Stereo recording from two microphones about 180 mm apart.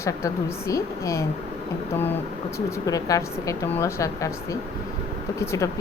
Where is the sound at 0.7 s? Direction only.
15° left (ahead or behind).